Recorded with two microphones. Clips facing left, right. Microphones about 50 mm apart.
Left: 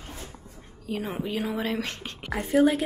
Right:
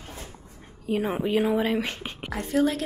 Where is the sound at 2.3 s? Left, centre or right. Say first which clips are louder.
Left 3 dB; centre.